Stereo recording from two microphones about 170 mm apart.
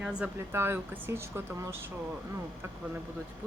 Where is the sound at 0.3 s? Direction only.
15° right (ahead or behind).